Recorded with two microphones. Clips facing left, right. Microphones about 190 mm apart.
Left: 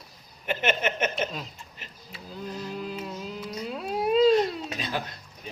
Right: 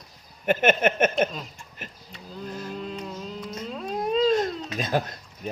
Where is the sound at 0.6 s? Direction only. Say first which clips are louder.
Right 5 dB; 50° right (ahead or behind).